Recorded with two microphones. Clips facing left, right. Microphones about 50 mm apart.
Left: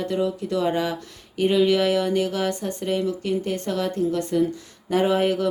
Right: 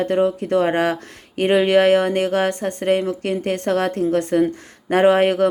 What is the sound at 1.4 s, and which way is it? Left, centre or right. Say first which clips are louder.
Speech: right 4 dB; right.